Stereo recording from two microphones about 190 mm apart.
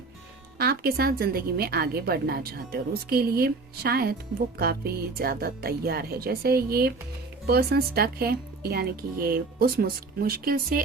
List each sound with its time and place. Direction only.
0.6 s speech: 55° right (ahead or behind)